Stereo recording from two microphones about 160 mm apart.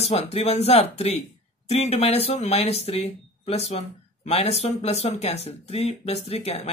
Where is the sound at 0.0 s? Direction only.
40° left (ahead or behind).